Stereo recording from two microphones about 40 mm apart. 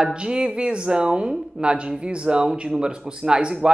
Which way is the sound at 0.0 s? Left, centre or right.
Right.